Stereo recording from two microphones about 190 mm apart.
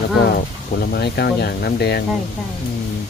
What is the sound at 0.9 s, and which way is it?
Speech, 60° left (ahead or behind).